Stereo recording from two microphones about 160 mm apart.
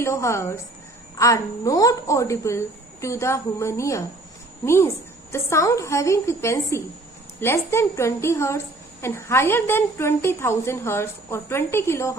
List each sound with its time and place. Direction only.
0.0 s a woman's voice: 15° left (ahead or behind)